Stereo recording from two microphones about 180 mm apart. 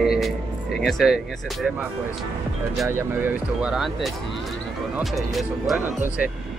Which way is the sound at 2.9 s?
15° right (ahead or behind).